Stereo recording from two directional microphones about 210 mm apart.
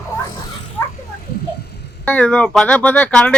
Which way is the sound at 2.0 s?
5° left (ahead or behind).